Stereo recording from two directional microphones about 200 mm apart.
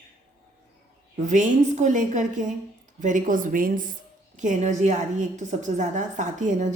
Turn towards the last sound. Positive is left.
turn(degrees=-40)  # may be behind; listen again after turning